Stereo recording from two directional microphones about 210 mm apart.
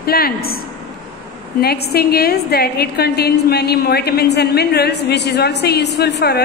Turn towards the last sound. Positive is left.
turn(degrees=50)  # may be behind; listen again after turning